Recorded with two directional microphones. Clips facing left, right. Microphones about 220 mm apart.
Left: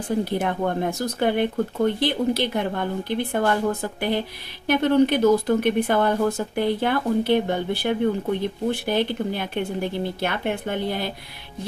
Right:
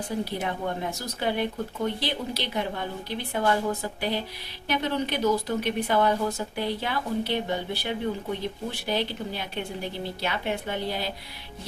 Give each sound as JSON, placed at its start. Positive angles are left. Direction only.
{"t": 0.3, "sound": "speech", "side_deg": 50}